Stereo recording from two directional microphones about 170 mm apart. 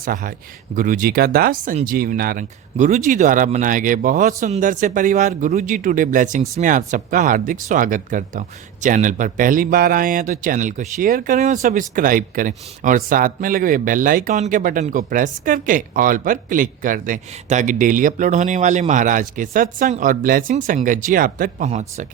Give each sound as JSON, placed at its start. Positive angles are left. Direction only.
{"t": 0.0, "sound": "speech", "side_deg": -55}
{"t": 21.7, "sound": "speech", "side_deg": -40}